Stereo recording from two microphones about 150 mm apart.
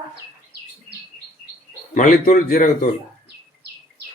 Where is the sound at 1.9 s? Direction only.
60° left (ahead or behind).